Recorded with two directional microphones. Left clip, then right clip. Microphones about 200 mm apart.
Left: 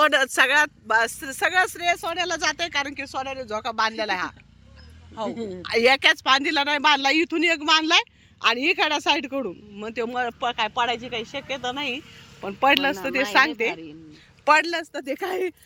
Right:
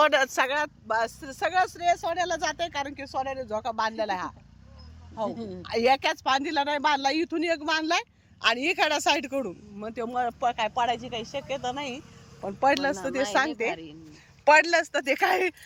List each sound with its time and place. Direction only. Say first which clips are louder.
0.0 s a man's voice: left 3 dB; 15° left (ahead or behind)
5.3 s speech: left 5 dB; 35° left (ahead or behind)
5.6 s a man's voice: left 5 dB; 10° left (ahead or behind)
13.5 s speech: left 3 dB; 25° left (ahead or behind)
14.4 s speech: even; 5° right (ahead or behind)